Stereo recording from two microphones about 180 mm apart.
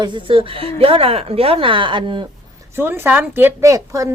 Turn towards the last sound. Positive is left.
turn(degrees=-15)  # may be behind; listen again after turning